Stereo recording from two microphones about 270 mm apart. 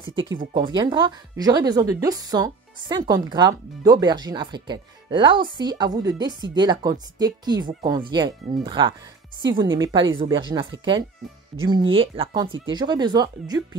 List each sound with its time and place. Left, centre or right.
0.6 s speech: centre